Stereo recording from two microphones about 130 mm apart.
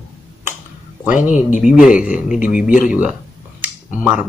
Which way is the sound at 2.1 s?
80° left.